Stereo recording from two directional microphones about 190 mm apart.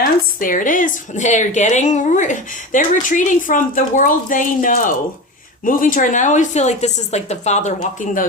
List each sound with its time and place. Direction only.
0.3 s speech: 45° left (ahead or behind)